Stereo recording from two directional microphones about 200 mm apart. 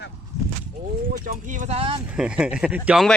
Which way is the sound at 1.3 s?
30° right (ahead or behind).